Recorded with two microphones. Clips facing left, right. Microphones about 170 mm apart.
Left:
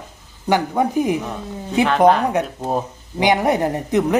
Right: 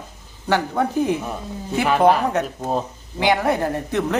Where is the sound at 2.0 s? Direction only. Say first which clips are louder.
Left 2 dB; 5° right (ahead or behind).